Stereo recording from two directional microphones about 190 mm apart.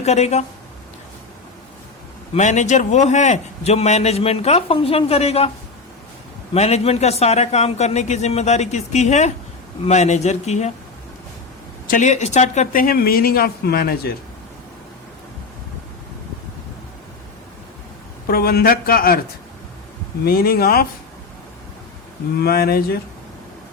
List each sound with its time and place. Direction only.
0.0 s a man's voice: 35° left (ahead or behind)
2.3 s a man's voice: 40° left (ahead or behind)
6.5 s a man's voice: 35° left (ahead or behind)
11.9 s speech: 40° left (ahead or behind)
18.3 s speech: 55° left (ahead or behind)
20.2 s speech: 50° left (ahead or behind)
22.4 s speech: 55° left (ahead or behind)